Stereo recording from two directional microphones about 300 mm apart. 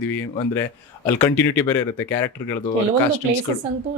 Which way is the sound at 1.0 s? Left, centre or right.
Centre.